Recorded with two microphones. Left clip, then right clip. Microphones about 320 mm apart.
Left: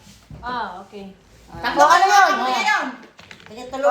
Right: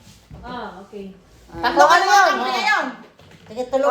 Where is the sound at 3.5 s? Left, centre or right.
Centre.